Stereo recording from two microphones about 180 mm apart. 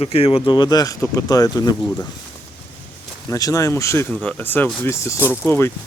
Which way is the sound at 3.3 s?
20° left (ahead or behind).